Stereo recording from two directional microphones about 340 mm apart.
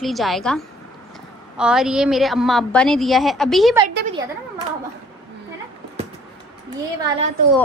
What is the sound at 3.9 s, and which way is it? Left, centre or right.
Speech, right.